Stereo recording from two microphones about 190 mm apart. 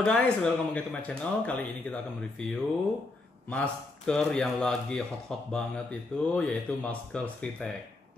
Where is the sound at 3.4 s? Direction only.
5° left (ahead or behind).